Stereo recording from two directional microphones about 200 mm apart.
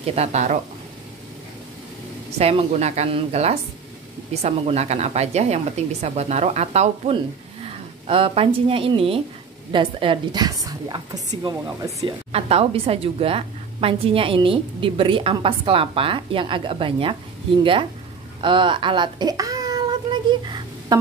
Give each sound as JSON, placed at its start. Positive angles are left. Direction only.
{"t": 0.0, "sound": "speech", "side_deg": -30}
{"t": 2.3, "sound": "a woman's voice", "side_deg": -30}
{"t": 12.0, "sound": "a woman's voice", "side_deg": -30}
{"t": 18.4, "sound": "a child's voice", "side_deg": -25}